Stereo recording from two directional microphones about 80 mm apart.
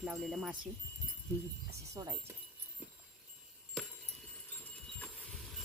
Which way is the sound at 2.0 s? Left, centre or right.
Right.